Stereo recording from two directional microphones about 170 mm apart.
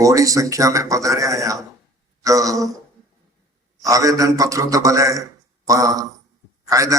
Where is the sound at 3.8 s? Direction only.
20° right (ahead or behind).